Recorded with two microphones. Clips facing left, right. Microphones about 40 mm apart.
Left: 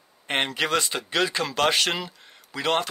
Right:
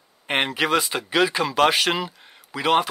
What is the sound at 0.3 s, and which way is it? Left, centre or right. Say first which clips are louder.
Speech: right 3 dB; centre.